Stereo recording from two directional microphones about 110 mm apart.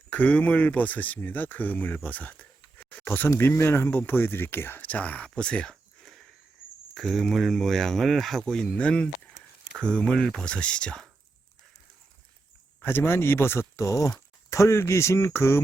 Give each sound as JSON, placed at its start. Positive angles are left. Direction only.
{"t": 0.1, "sound": "speech", "side_deg": 15}
{"t": 12.8, "sound": "speech", "side_deg": 20}